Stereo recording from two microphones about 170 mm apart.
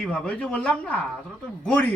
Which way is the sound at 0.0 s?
5° left (ahead or behind).